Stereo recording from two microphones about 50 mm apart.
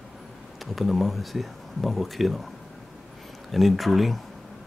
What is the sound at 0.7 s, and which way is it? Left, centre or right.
Speech, centre.